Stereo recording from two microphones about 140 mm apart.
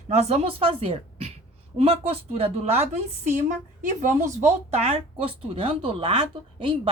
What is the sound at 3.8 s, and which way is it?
Speech, 65° right (ahead or behind).